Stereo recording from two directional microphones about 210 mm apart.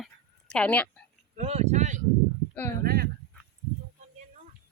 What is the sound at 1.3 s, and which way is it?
Speech, 30° right (ahead or behind).